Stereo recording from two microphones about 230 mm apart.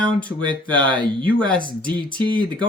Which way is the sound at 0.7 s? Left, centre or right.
Centre.